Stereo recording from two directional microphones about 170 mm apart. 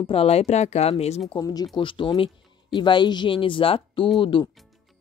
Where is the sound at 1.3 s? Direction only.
20° left (ahead or behind).